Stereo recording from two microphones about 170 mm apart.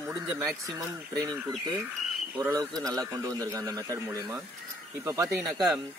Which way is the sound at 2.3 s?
15° right (ahead or behind).